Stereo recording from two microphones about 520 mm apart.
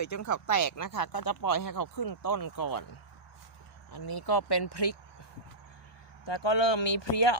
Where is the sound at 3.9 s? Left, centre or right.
Left.